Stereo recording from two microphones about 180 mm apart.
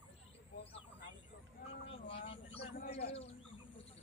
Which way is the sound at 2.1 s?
30° left (ahead or behind).